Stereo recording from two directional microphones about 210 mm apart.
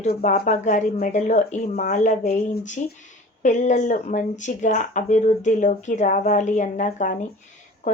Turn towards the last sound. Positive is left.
turn(degrees=35)  # may be behind; listen again after turning